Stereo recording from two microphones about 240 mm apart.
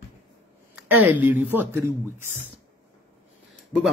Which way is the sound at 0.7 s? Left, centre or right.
Centre.